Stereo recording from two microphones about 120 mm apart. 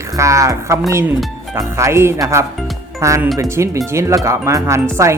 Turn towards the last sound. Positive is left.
turn(degrees=-25)  # may be behind; listen again after turning